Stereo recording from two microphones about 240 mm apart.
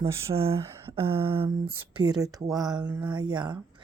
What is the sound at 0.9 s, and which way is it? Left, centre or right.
Speech, right.